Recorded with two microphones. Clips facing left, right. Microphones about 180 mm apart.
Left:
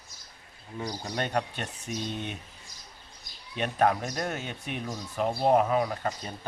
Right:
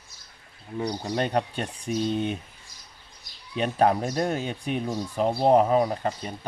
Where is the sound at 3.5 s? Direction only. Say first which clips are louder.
Right 3 dB; 30° right (ahead or behind).